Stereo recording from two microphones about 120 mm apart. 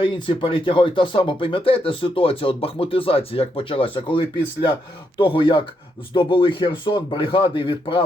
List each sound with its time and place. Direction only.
0.0 s speech: 45° left (ahead or behind)